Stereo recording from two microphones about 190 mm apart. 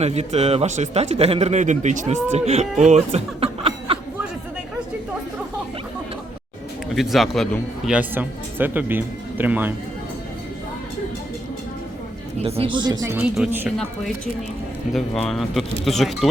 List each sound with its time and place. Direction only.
0.0 s speech: 35° right (ahead or behind)
6.9 s speech: centre (ahead or behind)
12.4 s speech: 30° right (ahead or behind); by 13.7 s 5° right (ahead or behind)
14.9 s speech: centre (ahead or behind)